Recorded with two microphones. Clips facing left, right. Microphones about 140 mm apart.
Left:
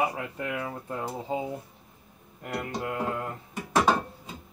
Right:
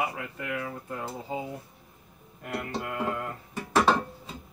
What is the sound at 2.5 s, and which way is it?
Speech, 15° left (ahead or behind).